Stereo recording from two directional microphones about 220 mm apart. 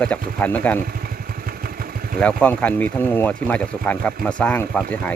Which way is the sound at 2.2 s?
5° left (ahead or behind).